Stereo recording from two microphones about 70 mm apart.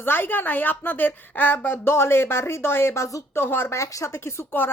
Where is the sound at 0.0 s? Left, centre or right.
Left.